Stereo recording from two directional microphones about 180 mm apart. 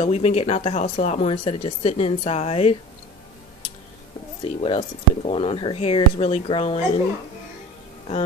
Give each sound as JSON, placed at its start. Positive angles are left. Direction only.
{"t": 0.0, "sound": "speech", "side_deg": 35}
{"t": 4.4, "sound": "speech", "side_deg": 30}